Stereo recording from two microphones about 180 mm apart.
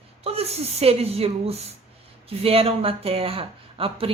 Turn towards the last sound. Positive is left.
turn(degrees=-30)  # may be behind; listen again after turning